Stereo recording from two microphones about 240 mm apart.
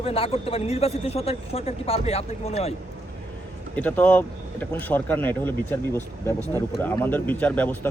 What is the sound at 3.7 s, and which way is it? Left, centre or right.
A man's voice, centre.